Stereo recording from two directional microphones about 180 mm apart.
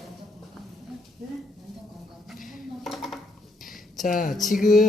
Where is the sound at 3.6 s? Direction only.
Centre (ahead or behind).